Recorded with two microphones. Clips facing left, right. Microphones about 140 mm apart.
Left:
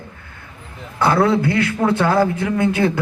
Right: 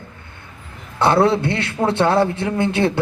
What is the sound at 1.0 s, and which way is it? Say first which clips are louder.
A man's voice: even; 25° right (ahead or behind).